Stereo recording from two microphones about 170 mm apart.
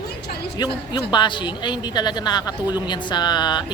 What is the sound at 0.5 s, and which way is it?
Speech, 25° left (ahead or behind).